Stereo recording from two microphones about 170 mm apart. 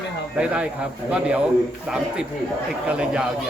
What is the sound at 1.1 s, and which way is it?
Speech, 5° right (ahead or behind).